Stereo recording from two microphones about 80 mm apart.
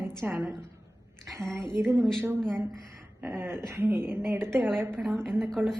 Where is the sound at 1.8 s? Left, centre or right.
Centre.